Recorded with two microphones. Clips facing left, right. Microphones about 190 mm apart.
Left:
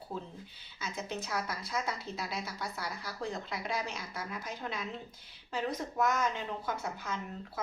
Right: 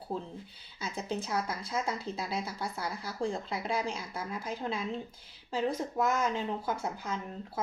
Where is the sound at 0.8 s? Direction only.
30° right (ahead or behind).